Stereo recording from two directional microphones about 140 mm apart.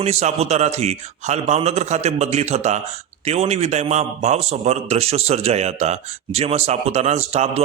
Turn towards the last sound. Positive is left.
turn(degrees=-50)  # may be behind; listen again after turning